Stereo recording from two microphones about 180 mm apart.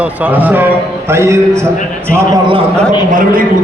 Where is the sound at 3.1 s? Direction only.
50° right (ahead or behind).